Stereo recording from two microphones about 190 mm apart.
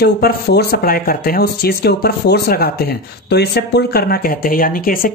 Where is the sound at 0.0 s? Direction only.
55° left (ahead or behind).